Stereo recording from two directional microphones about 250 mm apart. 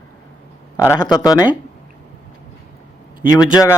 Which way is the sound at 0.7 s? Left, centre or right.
Centre.